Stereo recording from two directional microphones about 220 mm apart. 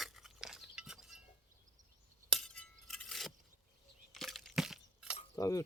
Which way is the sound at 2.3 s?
5° left (ahead or behind).